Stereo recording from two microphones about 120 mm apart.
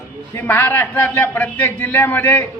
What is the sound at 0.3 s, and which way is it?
A man's voice, 15° left (ahead or behind).